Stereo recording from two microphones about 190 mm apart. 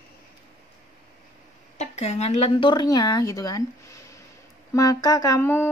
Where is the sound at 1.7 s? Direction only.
35° left (ahead or behind); by 3.6 s 20° left (ahead or behind).